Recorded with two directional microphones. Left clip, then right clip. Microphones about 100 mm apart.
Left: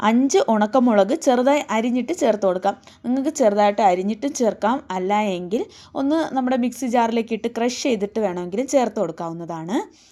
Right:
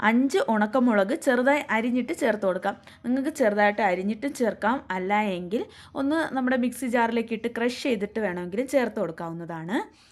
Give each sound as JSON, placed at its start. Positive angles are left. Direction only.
{"t": 0.2, "sound": "a woman's voice", "side_deg": 30}